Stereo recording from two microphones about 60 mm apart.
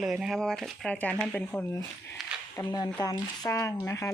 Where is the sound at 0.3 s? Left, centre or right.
Centre.